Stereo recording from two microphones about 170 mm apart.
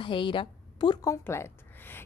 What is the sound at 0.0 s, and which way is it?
A woman's voice, 30° left (ahead or behind).